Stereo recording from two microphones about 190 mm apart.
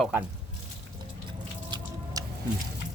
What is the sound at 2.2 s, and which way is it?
Music, 20° right (ahead or behind).